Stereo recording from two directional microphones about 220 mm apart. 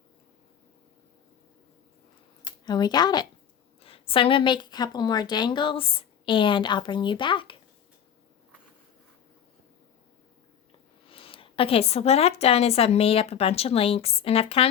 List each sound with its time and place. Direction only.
2.6 s a woman's voice: 20° left (ahead or behind)
11.1 s a woman's voice: 25° left (ahead or behind)